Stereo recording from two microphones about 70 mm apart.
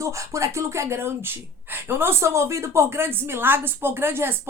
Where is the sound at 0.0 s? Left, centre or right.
Right.